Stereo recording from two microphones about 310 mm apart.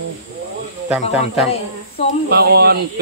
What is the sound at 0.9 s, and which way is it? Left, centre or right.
Speech, centre.